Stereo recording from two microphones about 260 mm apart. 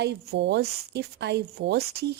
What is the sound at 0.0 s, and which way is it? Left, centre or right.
Speech, right.